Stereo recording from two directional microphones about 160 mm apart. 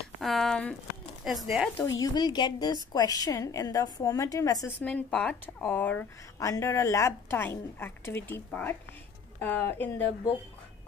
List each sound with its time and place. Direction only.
0.2 s a sound: centre (ahead or behind)
1.2 s speech: centre (ahead or behind)
2.0 s a woman's voice: 25° left (ahead or behind)
4.7 s a woman's voice: 10° left (ahead or behind)